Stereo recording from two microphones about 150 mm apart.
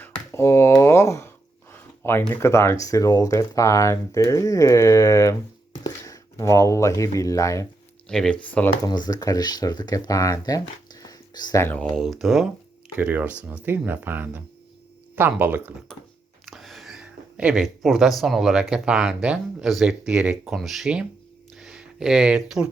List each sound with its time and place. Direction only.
0.0 s finger snapping: 15° left (ahead or behind)
1.7 s speech: 15° left (ahead or behind)
8.0 s speech: 5° left (ahead or behind)
9.0 s speech: 25° left (ahead or behind)
11.6 s speech: 10° left (ahead or behind)
11.9 s speech: centre (ahead or behind)
16.5 s speech: centre (ahead or behind)
21.5 s a sound: 5° right (ahead or behind)